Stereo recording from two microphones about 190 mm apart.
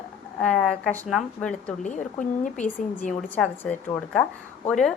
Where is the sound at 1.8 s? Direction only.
40° left (ahead or behind).